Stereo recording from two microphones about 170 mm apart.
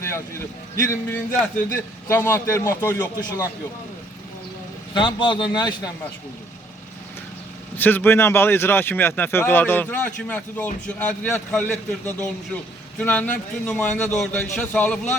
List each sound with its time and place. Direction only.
0.0 s a man's voice: 15° left (ahead or behind)
4.9 s speech: 30° left (ahead or behind)
7.8 s a man's voice: 10° left (ahead or behind)